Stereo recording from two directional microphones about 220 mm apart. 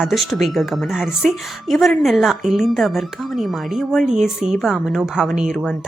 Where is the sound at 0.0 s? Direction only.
Centre (ahead or behind).